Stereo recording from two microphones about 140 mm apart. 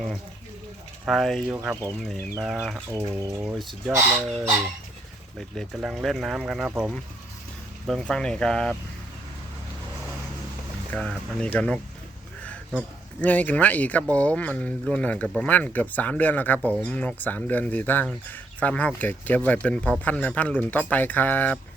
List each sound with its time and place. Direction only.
1.0 s speech: centre (ahead or behind)
1.7 s speech: 20° right (ahead or behind)
2.4 s speech: 5° right (ahead or behind)
2.9 s speech: 25° right (ahead or behind)
3.5 s speech: centre (ahead or behind)
7.9 s speech: 5° left (ahead or behind)
10.9 s speech: 5° left (ahead or behind)
13.2 s speech: 10° left (ahead or behind)